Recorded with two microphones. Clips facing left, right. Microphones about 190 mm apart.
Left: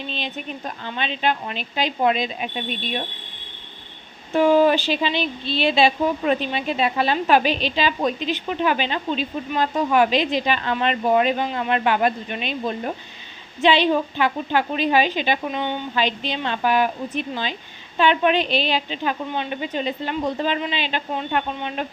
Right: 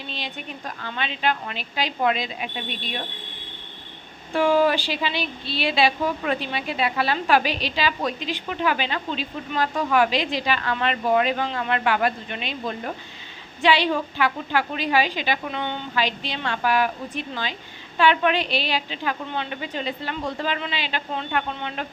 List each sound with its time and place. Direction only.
0.8 s a woman's voice: 20° left (ahead or behind)
4.3 s a woman's voice: 20° left (ahead or behind)